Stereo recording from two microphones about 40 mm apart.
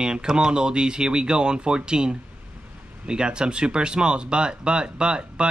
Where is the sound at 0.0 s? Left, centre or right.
Right.